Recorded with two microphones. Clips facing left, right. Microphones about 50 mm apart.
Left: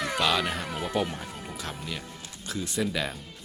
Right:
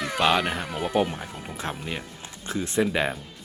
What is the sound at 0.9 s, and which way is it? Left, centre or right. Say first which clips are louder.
Speech: right 6 dB; centre.